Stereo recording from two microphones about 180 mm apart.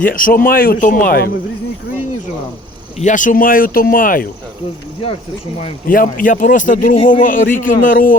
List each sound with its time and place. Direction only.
0.0 s a man's voice: 50° left (ahead or behind)
3.0 s a man's voice: 45° left (ahead or behind)
5.9 s a man's voice: 50° left (ahead or behind)